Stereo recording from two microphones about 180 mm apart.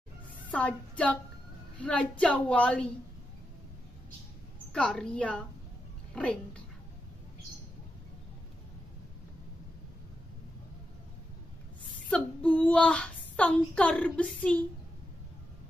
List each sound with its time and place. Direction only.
0.5 s a woman's voice: 5° left (ahead or behind)
4.7 s a woman's voice: 5° left (ahead or behind)
12.1 s speech: 5° left (ahead or behind)